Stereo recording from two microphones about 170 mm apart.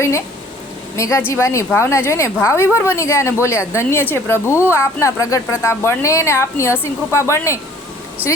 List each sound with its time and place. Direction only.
0.9 s speech: 20° left (ahead or behind)